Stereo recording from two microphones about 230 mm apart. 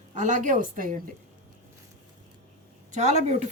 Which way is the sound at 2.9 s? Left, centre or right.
Right.